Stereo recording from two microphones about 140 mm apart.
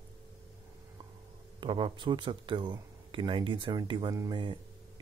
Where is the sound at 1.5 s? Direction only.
35° right (ahead or behind).